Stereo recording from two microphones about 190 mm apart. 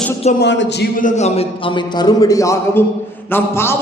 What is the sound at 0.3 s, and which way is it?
Speech, 70° left (ahead or behind).